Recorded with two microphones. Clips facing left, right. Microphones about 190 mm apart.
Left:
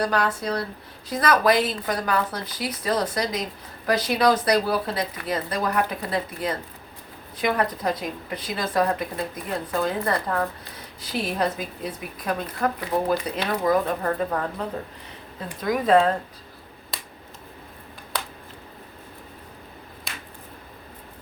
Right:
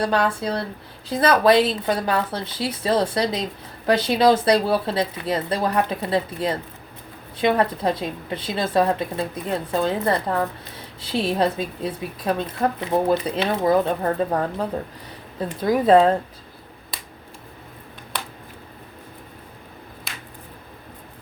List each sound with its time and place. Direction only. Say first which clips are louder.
0.0 s a woman's voice: right 3 dB; 30° right (ahead or behind)
15.4 s a woman's voice: right 4 dB; 30° right (ahead or behind)
20.1 s a sound: left 1 dB; centre (ahead or behind)